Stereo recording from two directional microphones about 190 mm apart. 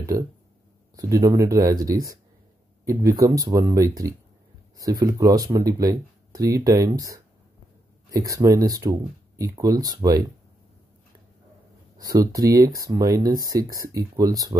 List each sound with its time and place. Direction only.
0.1 s speech: 20° right (ahead or behind)
12.0 s speech: 20° right (ahead or behind)